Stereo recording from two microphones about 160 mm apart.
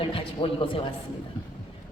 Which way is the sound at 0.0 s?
35° left (ahead or behind).